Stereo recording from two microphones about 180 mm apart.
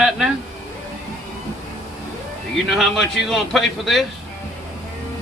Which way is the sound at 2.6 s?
Centre (ahead or behind).